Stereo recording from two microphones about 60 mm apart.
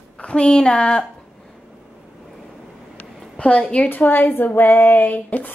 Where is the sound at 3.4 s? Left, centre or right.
Left.